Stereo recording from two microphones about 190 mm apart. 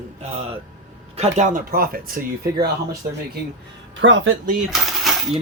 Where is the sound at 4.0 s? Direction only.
90° right.